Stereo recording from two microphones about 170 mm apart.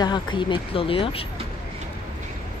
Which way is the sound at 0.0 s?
25° left (ahead or behind).